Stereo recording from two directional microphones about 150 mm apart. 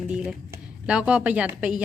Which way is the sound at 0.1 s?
5° right (ahead or behind).